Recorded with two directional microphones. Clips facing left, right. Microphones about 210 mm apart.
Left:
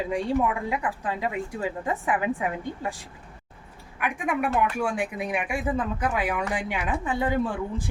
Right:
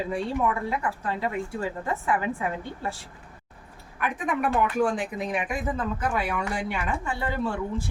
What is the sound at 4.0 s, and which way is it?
A woman's voice, 10° left (ahead or behind).